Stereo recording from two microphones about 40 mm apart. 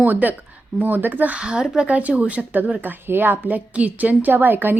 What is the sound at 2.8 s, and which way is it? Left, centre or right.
Speech, right.